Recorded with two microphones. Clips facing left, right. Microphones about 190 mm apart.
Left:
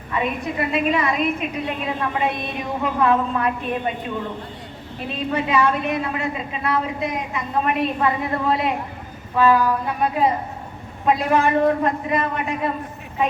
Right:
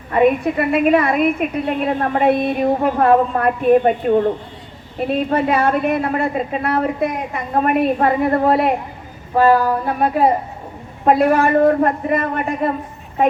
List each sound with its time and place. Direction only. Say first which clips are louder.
0.1 s a woman's voice: right 10 dB; 50° right (ahead or behind)